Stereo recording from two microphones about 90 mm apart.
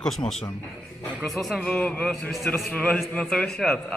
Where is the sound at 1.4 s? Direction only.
Centre (ahead or behind).